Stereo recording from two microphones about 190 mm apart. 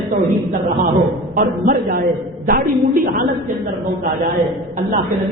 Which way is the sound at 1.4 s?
50° right (ahead or behind).